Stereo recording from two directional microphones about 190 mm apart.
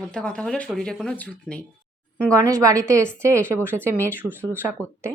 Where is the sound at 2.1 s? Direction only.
15° right (ahead or behind).